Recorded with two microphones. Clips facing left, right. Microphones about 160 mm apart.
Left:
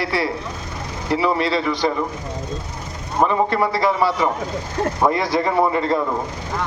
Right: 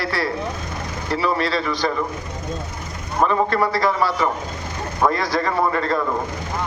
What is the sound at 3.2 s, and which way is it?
A man's voice, 20° left (ahead or behind).